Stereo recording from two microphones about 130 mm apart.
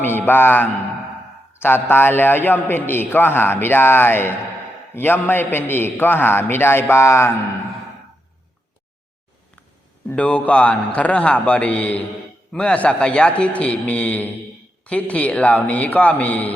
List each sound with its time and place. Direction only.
0.0 s a man's voice: 15° left (ahead or behind)
10.1 s a man's voice: 10° left (ahead or behind)